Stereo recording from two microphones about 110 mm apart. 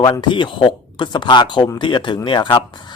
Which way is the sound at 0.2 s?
45° left (ahead or behind).